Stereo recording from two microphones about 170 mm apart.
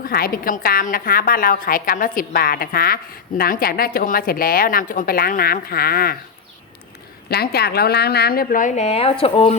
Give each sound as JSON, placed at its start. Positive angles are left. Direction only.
{"t": 0.0, "sound": "a woman's voice", "side_deg": 60}
{"t": 7.3, "sound": "a woman's voice", "side_deg": 70}